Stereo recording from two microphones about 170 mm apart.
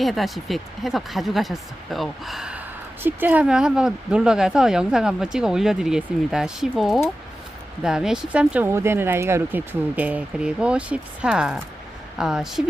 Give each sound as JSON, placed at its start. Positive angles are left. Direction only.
{"t": 0.0, "sound": "speech", "side_deg": 0}